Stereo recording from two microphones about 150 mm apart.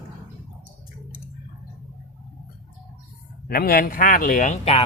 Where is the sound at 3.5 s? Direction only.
80° left; by 4.9 s 40° left (ahead or behind).